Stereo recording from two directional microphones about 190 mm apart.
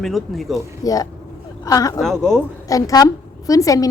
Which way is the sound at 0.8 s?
20° left (ahead or behind).